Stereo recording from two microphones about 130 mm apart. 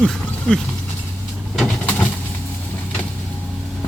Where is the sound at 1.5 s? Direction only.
10° left (ahead or behind).